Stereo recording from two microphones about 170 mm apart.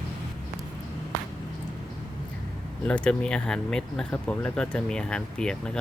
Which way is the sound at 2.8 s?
5° left (ahead or behind).